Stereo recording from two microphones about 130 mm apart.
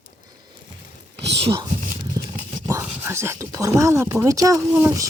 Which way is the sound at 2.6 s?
90° right.